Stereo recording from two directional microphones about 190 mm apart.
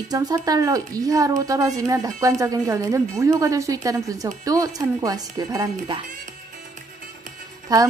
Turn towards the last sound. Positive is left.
turn(degrees=-20)  # may be behind; listen again after turning